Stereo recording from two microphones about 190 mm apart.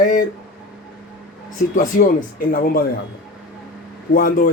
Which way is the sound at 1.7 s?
45° left (ahead or behind).